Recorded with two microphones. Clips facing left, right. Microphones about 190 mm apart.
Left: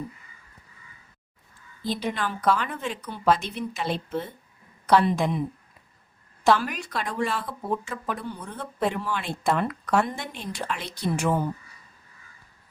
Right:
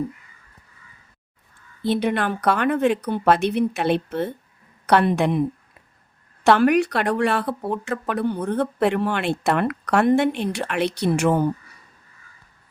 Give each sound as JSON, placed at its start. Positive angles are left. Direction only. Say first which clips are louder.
{"t": 1.8, "sound": "speech", "louder": "right 7 dB", "side_deg": -65}
{"t": 6.4, "sound": "a woman's voice", "louder": "right 7 dB", "side_deg": -65}